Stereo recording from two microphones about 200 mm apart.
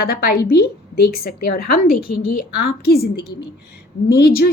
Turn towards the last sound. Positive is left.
turn(degrees=50)  # may be behind; listen again after turning